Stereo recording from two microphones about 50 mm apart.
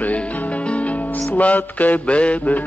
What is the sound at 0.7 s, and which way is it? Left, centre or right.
Music, left.